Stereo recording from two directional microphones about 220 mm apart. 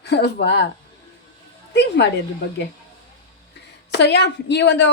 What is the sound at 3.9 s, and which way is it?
A woman's voice, 50° left (ahead or behind).